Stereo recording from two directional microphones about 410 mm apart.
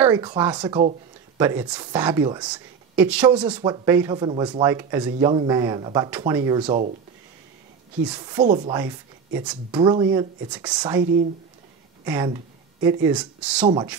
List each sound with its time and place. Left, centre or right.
0.0 s speech: centre
8.0 s a woman's voice: centre